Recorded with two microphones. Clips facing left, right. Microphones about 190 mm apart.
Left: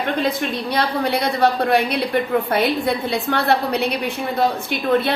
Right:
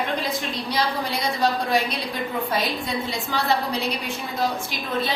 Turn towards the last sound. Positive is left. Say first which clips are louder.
# left 8 dB
turn(degrees=60)  # may be behind; listen again after turning